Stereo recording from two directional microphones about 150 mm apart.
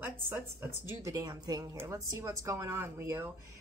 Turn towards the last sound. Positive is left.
turn(degrees=-15)  # may be behind; listen again after turning